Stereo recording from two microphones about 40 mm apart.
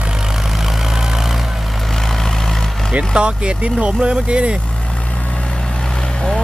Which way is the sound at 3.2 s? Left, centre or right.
Right.